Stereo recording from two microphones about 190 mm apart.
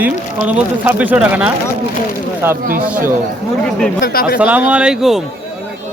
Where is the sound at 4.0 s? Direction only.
50° left (ahead or behind).